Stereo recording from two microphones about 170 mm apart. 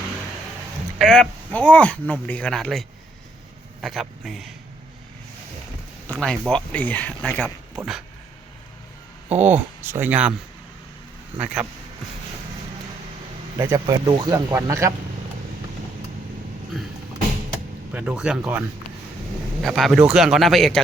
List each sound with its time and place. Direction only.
0.9 s speech: 5° left (ahead or behind)
6.1 s speech: 5° left (ahead or behind)
9.4 s speech: 15° right (ahead or behind)
11.3 s speech: 5° right (ahead or behind)
13.6 s speech: 15° right (ahead or behind)
17.9 s speech: 5° right (ahead or behind)
19.6 s speech: centre (ahead or behind)